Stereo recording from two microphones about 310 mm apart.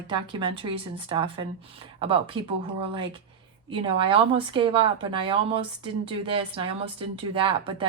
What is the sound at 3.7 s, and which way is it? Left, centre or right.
A woman's voice, centre.